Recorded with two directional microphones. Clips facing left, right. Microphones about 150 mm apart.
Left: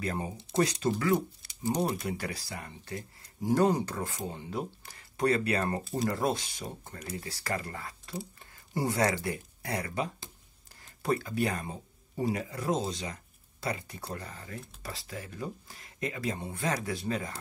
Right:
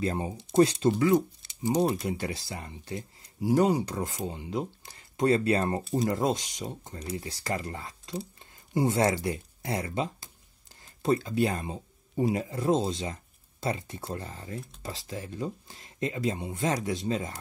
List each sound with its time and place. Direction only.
0.0 s speech: 25° right (ahead or behind)
3.3 s speech: 10° right (ahead or behind)